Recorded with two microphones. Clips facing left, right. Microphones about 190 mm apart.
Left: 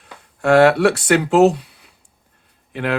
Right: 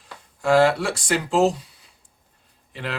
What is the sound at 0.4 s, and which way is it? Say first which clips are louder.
Speech: left 6 dB; 65° left (ahead or behind).